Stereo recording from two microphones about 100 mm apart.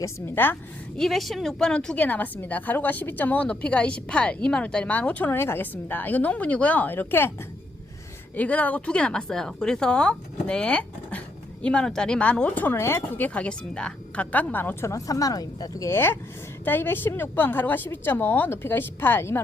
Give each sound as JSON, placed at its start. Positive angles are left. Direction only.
{"t": 0.4, "sound": "a woman's voice", "side_deg": 20}
{"t": 0.9, "sound": "a woman's voice", "side_deg": 0}
{"t": 8.4, "sound": "a woman's voice", "side_deg": 15}
{"t": 15.9, "sound": "a woman's voice", "side_deg": 25}